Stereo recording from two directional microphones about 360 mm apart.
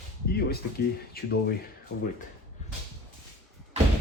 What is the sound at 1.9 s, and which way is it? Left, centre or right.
Speech, left.